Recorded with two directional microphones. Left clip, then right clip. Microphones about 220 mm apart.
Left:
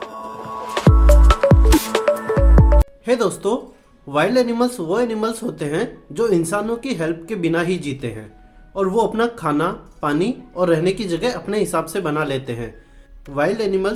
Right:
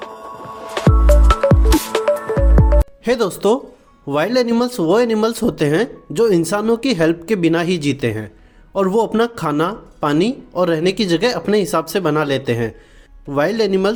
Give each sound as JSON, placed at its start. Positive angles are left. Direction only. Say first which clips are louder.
{"t": 0.7, "sound": "music", "louder": "right 1 dB", "side_deg": 0}
{"t": 3.0, "sound": "speech", "louder": "right 2 dB", "side_deg": -40}